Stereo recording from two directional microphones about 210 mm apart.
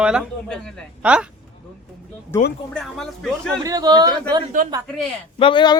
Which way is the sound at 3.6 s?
20° right (ahead or behind).